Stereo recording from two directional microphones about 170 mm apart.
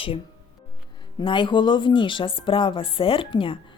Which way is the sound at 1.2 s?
30° left (ahead or behind).